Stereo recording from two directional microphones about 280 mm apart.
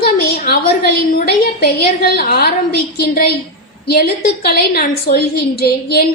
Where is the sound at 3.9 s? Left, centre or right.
Left.